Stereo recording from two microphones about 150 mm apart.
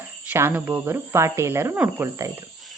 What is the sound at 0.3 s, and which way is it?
Speech, 15° right (ahead or behind).